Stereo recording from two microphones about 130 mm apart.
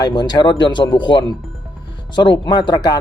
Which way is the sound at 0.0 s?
35° left (ahead or behind).